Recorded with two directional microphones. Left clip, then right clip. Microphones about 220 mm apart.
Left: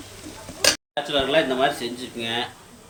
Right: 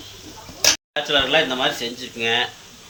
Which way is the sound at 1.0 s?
5° left (ahead or behind).